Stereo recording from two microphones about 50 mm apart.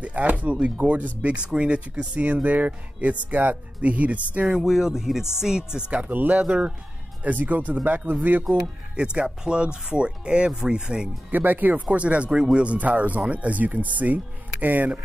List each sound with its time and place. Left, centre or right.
0.0 s speech: right
4.6 s speech: centre
5.9 s speech: right
6.4 s speech: right
7.2 s speech: right
8.9 s speech: centre
11.2 s speech: right